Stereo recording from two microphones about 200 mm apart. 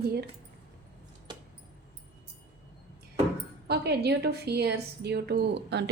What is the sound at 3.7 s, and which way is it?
A woman's voice, 55° right (ahead or behind).